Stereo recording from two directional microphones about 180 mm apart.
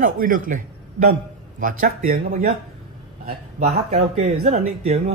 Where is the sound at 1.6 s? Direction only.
50° right (ahead or behind).